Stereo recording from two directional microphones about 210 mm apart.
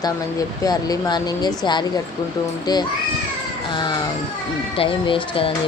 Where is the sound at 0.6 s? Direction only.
20° left (ahead or behind).